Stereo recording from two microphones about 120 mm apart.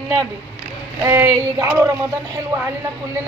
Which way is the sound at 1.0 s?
20° right (ahead or behind).